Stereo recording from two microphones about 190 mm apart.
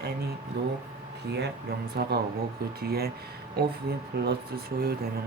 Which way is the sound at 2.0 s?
55° right (ahead or behind).